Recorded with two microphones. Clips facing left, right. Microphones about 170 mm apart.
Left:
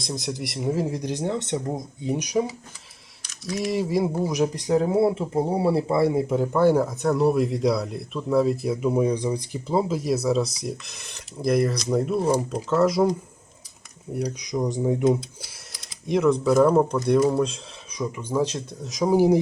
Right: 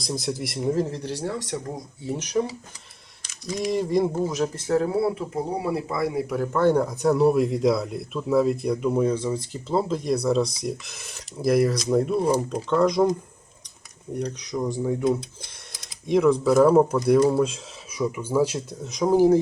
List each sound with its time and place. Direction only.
0.0 s speech: centre (ahead or behind); by 15.2 s 20° left (ahead or behind)
16.0 s speech: centre (ahead or behind)
19.1 s speech: 15° left (ahead or behind)